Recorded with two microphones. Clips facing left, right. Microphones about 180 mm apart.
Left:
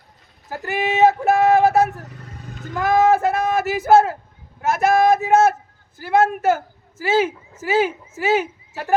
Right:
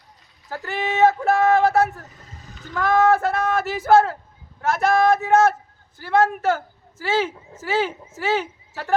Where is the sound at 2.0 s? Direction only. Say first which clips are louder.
Left 6 dB; 65° left (ahead or behind).